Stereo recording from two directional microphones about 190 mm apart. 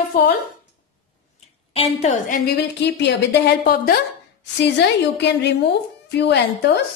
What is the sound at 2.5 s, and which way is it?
A woman's voice, 65° left (ahead or behind).